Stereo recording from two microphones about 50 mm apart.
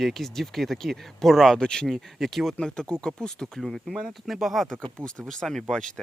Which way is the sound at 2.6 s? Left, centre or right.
Centre.